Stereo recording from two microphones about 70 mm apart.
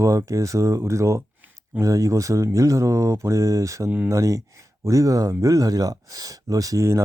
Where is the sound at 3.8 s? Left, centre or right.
Centre.